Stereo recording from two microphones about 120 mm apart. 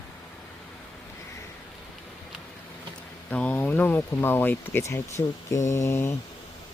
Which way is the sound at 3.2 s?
10° left (ahead or behind).